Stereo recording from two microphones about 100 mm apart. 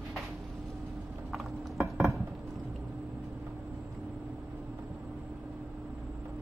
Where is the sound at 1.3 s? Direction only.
Centre (ahead or behind).